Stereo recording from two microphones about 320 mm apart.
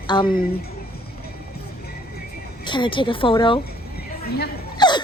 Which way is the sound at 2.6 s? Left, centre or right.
Centre.